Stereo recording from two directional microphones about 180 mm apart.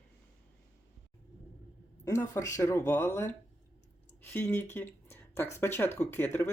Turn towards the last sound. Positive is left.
turn(degrees=10)  # may be behind; listen again after turning